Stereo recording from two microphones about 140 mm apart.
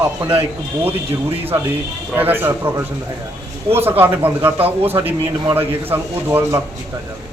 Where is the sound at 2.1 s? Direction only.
15° right (ahead or behind).